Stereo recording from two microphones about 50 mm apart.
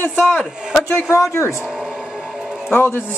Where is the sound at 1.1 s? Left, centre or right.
Left.